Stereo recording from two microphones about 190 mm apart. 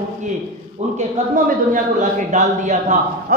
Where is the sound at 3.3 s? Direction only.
50° right (ahead or behind).